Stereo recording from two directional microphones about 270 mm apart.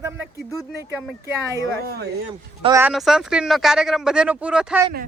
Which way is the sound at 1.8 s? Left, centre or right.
Right.